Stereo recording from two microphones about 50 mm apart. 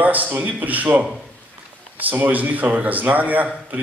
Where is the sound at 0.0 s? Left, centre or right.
Right.